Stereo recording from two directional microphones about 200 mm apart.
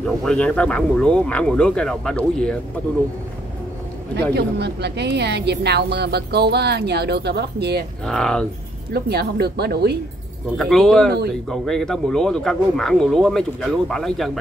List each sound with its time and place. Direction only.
0.0 s speech: 5° left (ahead or behind)
4.3 s a woman's voice: 55° right (ahead or behind)
8.0 s speech: 5° left (ahead or behind)
8.9 s speech: 55° right (ahead or behind)
10.6 s speech: centre (ahead or behind)
11.1 s speech: 55° right (ahead or behind)
11.4 s speech: centre (ahead or behind)